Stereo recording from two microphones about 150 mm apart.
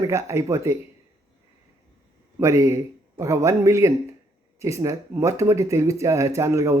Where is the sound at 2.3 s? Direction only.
20° right (ahead or behind).